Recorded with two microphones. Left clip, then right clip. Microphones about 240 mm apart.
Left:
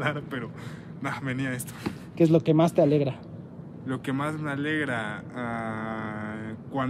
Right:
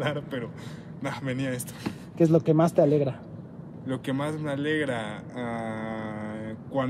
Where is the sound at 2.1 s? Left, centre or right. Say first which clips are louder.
Even; left.